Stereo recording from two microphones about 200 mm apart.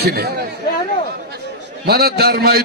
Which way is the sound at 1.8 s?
50° right (ahead or behind).